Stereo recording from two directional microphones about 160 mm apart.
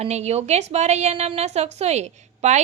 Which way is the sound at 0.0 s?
40° right (ahead or behind).